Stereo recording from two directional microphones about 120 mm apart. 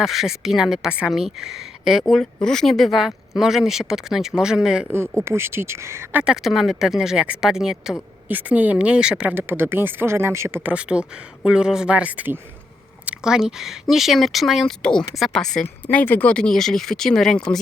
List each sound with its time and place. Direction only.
0.0 s a woman's voice: centre (ahead or behind)
4.9 s speech: 20° right (ahead or behind)
6.2 s a woman's voice: 5° right (ahead or behind)